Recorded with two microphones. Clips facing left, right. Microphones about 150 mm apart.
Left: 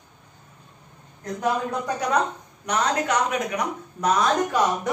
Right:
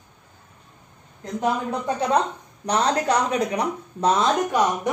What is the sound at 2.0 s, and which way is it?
A woman's voice, 30° right (ahead or behind).